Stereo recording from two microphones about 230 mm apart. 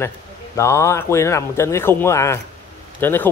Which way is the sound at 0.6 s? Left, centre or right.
Centre.